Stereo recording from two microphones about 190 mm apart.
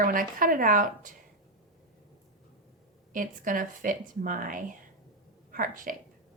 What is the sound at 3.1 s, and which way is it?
Speech, 45° right (ahead or behind).